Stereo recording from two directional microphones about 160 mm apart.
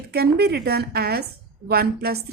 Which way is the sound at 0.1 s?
80° right.